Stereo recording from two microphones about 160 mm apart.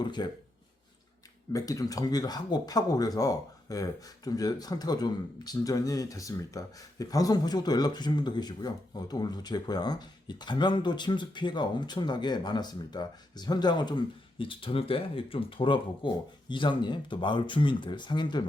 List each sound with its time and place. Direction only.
0.0 s speech: 25° left (ahead or behind)
1.5 s speech: 20° left (ahead or behind)